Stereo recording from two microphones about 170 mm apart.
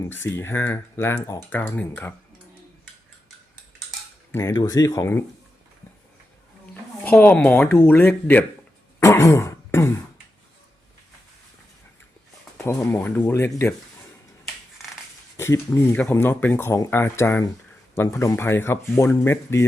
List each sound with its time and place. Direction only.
0.0 s speech: 15° left (ahead or behind)
4.3 s speech: 15° left (ahead or behind)
7.0 s speech: 10° left (ahead or behind)
9.0 s throat clearing: 15° left (ahead or behind)
12.5 s speech: 15° left (ahead or behind)
15.4 s speech: 15° left (ahead or behind)